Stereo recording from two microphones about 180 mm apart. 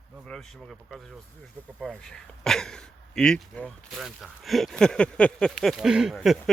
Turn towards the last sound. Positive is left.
turn(degrees=0)  # may be behind; listen again after turning